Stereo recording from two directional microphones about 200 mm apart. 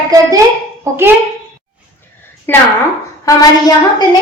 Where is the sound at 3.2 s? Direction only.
20° left (ahead or behind).